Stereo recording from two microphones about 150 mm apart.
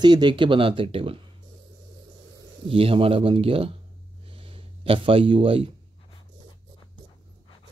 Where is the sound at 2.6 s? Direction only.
40° right (ahead or behind).